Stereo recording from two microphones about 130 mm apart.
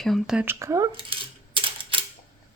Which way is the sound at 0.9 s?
45° right (ahead or behind).